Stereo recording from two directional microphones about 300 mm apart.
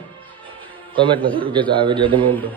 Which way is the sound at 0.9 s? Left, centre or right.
Centre.